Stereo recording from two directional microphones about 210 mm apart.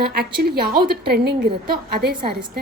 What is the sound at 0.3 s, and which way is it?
A woman's voice, 45° right (ahead or behind).